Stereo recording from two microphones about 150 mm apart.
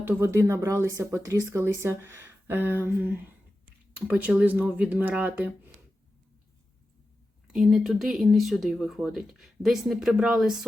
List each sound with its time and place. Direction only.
0.1 s speech: 15° right (ahead or behind)
7.4 s speech: centre (ahead or behind)